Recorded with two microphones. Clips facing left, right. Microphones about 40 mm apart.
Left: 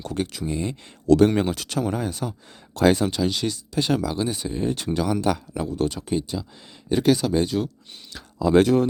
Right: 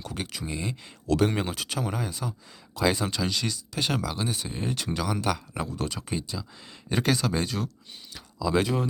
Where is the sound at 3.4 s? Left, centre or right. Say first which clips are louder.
Left 5 dB; centre.